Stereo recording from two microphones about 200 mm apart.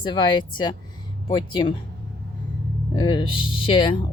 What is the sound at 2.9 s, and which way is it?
Speech, 20° left (ahead or behind).